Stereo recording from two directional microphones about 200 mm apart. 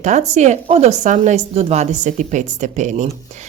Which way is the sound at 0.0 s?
35° right (ahead or behind).